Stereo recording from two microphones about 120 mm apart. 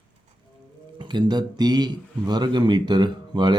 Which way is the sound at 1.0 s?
40° right (ahead or behind).